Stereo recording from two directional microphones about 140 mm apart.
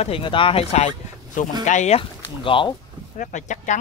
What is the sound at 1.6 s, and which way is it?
Speech, 60° left (ahead or behind).